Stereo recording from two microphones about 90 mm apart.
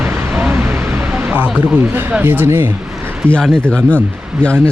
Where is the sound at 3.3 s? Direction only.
10° left (ahead or behind).